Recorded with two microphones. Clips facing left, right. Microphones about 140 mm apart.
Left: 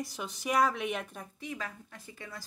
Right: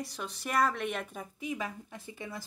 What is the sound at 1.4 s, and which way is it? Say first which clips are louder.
Speech: right 4 dB; 15° right (ahead or behind).